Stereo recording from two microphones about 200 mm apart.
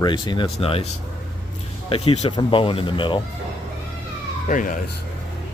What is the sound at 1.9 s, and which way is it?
Speech, 30° left (ahead or behind).